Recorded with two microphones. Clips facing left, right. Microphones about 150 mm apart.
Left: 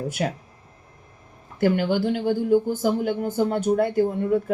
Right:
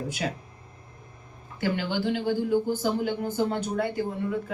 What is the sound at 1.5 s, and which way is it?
Speech, 50° left (ahead or behind).